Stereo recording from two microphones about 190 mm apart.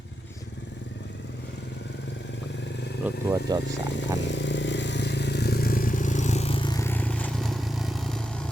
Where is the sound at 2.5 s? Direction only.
65° left (ahead or behind).